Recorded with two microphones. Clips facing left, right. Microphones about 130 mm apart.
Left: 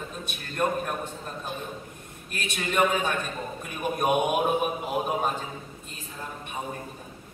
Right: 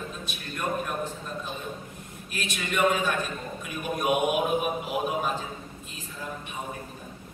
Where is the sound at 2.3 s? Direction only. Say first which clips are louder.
Left 1 dB; 50° left (ahead or behind).